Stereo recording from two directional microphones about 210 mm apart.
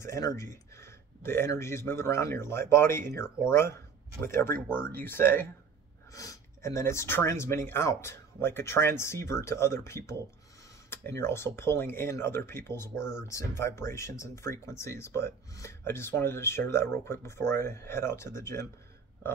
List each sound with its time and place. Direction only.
0.0 s speech: 15° left (ahead or behind)